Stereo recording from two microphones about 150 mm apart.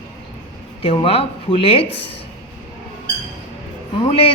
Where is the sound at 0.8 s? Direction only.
40° left (ahead or behind).